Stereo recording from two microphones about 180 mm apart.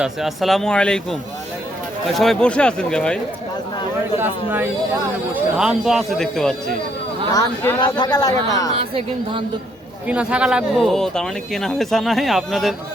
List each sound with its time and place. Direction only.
0.0 s speech: centre (ahead or behind)
2.1 s speech: centre (ahead or behind)
4.2 s speech: 10° right (ahead or behind)
7.3 s speech: 15° left (ahead or behind)
8.8 s speech: 30° right (ahead or behind)
10.1 s speech: 5° right (ahead or behind)